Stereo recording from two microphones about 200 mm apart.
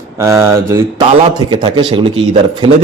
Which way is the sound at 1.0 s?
30° right (ahead or behind).